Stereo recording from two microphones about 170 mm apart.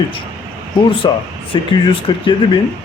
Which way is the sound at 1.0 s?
30° left (ahead or behind).